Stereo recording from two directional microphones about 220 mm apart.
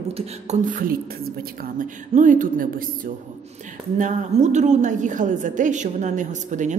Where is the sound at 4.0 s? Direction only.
35° right (ahead or behind).